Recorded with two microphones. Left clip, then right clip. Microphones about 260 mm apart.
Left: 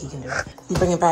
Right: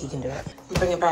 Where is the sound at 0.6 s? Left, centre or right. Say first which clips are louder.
Left 2 dB; left.